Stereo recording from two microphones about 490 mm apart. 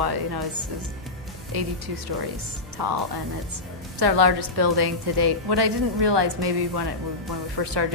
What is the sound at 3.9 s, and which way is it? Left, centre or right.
A woman's voice, right.